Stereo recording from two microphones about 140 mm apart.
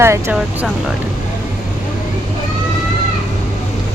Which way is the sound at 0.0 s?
20° right (ahead or behind).